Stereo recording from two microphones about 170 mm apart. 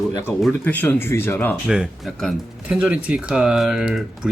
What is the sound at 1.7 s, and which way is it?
Speech, centre (ahead or behind).